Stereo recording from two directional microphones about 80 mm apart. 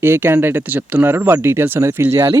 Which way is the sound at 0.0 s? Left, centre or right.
Right.